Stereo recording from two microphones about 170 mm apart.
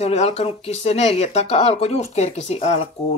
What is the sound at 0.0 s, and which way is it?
Speech, 40° left (ahead or behind).